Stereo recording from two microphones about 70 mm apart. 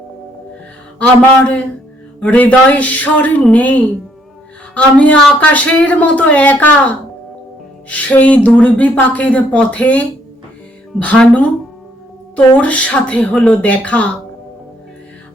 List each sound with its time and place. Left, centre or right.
0.9 s speech: centre
7.9 s speech: left
12.5 s speech: centre